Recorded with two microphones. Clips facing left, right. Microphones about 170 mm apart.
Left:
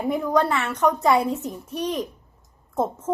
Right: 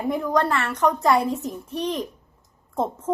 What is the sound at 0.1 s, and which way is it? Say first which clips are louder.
A child's voice: left 1 dB; 5° left (ahead or behind).